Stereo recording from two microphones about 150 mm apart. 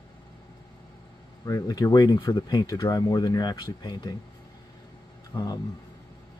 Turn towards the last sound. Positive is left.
turn(degrees=15)  # may be behind; listen again after turning